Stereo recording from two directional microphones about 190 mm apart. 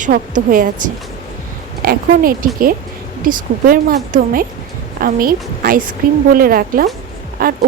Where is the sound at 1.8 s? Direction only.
50° right (ahead or behind).